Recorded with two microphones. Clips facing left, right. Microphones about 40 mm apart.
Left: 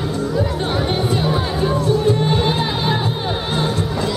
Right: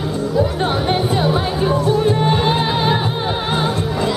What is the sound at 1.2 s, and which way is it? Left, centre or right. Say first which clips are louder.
Music: right 2 dB; centre.